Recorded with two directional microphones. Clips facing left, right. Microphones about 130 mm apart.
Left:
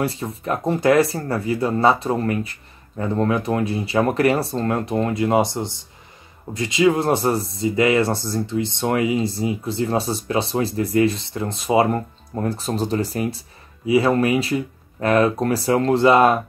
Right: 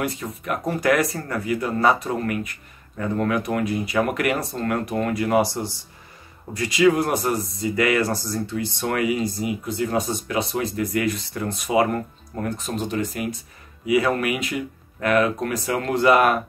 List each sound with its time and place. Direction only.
0.0 s speech: 30° left (ahead or behind)